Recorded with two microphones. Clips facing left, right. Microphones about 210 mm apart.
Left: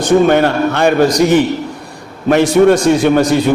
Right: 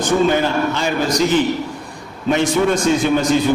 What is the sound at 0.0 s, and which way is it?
A man's voice, 65° left (ahead or behind).